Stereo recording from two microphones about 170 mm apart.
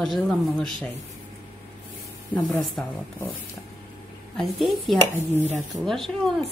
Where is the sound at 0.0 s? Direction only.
Centre (ahead or behind).